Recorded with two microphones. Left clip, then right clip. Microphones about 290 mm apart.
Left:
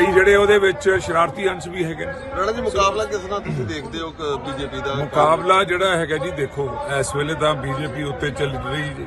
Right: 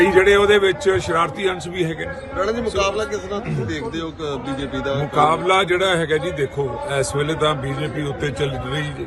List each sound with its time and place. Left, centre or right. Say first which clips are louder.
0.1 s a man's voice: even; centre
2.4 s speech: left 1 dB; centre
5.2 s a man's voice: left 1 dB; centre